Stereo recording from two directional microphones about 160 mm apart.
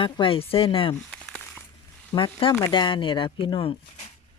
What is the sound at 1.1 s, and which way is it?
Crumpling, 10° left (ahead or behind).